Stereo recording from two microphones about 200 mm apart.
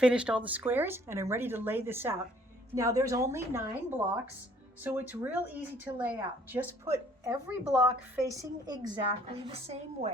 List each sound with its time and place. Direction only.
0.0 s speech: 5° right (ahead or behind)
8.4 s a woman's voice: 20° right (ahead or behind)